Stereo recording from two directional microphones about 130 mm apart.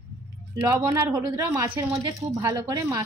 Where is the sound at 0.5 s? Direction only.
20° right (ahead or behind).